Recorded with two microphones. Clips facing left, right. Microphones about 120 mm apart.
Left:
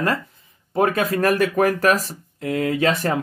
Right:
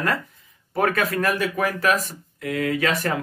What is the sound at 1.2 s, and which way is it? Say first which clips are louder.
Speech: left 5 dB; 45° left (ahead or behind).